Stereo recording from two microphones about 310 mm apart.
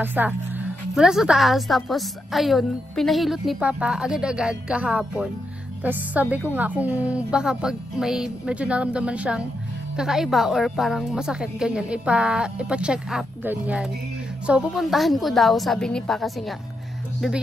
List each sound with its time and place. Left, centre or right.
0.0 s a woman's voice: centre